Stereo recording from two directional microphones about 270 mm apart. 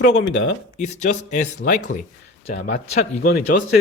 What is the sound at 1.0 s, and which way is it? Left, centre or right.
Speech, left.